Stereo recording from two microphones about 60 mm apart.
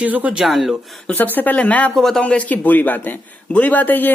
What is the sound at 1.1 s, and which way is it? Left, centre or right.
Speech, left.